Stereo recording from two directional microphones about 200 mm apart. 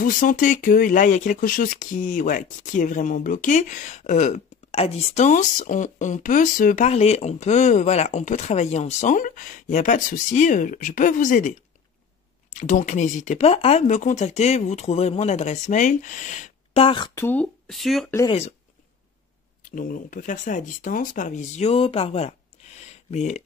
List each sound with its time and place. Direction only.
0.0 s speech: 40° left (ahead or behind)
12.5 s speech: 40° left (ahead or behind); by 18.1 s centre (ahead or behind)
19.7 s speech: 40° left (ahead or behind)